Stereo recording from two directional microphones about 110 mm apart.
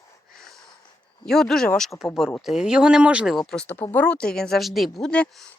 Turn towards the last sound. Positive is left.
turn(degrees=10)  # may be behind; listen again after turning